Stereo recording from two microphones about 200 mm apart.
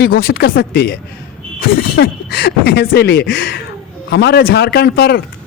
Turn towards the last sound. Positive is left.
turn(degrees=55)  # may be behind; listen again after turning